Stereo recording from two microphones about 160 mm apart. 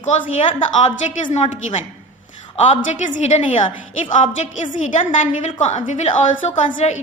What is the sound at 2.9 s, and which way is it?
A woman's voice, 50° left (ahead or behind).